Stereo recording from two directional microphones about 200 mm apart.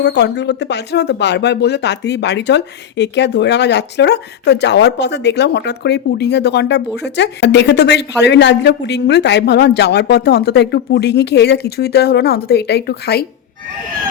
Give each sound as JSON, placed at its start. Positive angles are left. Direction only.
{"t": 0.0, "sound": "speech", "side_deg": 60}